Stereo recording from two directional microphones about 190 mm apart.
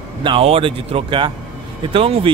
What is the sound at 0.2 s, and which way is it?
Speech, 30° right (ahead or behind).